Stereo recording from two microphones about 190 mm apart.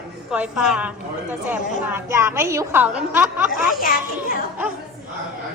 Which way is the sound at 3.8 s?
50° left (ahead or behind).